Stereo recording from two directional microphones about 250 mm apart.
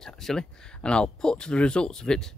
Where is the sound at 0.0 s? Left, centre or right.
Centre.